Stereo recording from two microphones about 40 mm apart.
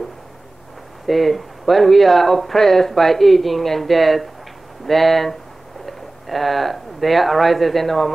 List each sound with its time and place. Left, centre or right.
1.0 s speech: centre